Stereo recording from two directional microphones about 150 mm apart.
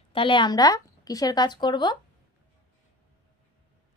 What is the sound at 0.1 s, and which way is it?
Speech, 35° left (ahead or behind).